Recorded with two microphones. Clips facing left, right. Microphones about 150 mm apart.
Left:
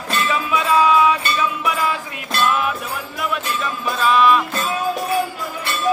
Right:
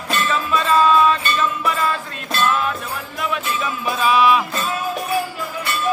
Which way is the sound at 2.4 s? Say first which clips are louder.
Even; 10° left (ahead or behind).